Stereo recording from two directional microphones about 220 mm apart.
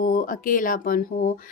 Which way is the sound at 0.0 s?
40° left (ahead or behind).